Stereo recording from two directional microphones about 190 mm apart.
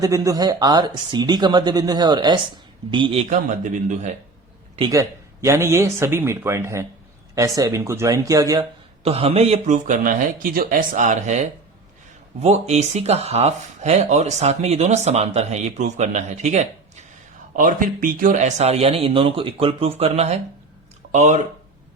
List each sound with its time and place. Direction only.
0.0 s speech: 20° right (ahead or behind); by 4.1 s 40° right (ahead or behind)
4.8 s speech: 15° right (ahead or behind)
9.0 s speech: 30° right (ahead or behind)